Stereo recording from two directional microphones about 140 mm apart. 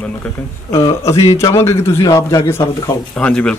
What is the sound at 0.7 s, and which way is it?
A man's voice, 20° left (ahead or behind).